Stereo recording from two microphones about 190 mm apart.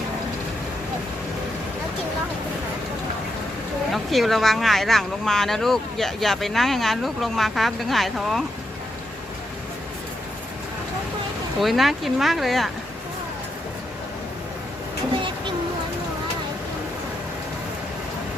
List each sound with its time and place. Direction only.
3.9 s speech: centre (ahead or behind)
11.6 s speech: centre (ahead or behind)